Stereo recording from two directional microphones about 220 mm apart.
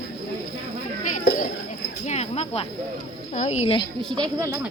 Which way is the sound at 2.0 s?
30° left (ahead or behind).